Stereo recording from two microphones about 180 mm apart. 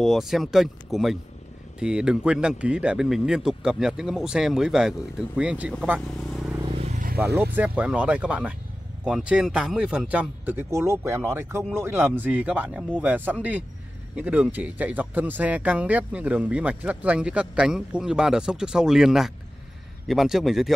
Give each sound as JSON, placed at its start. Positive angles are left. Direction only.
{"t": 0.0, "sound": "speech", "side_deg": 0}
{"t": 6.6, "sound": "vehicle", "side_deg": -35}
{"t": 7.2, "sound": "speech", "side_deg": -10}